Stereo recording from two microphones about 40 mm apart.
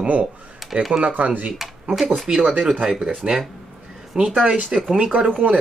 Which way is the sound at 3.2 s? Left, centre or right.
Centre.